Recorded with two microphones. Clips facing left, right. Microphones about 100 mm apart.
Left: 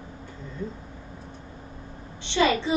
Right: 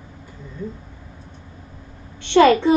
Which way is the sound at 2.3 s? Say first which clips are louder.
Right 10 dB; 55° right (ahead or behind).